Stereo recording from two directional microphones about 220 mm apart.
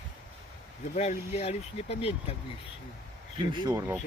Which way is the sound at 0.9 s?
30° left (ahead or behind).